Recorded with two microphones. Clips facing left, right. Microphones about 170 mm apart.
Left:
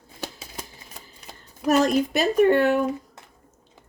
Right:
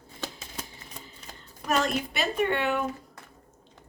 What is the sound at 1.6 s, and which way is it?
Speech, 40° left (ahead or behind).